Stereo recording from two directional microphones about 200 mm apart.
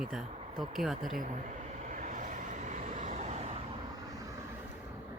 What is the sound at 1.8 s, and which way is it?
Vehicle, 40° right (ahead or behind).